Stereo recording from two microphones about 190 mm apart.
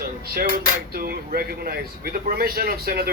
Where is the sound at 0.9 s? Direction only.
50° right (ahead or behind).